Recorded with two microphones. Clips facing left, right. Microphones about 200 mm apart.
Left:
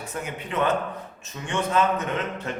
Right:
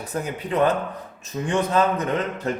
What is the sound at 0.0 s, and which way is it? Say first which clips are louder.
A man's voice: right 4 dB; 35° right (ahead or behind).